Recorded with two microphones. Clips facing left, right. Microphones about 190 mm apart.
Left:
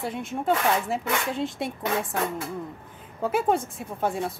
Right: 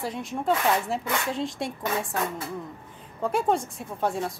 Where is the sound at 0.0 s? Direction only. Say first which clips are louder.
Left 1 dB; centre (ahead or behind).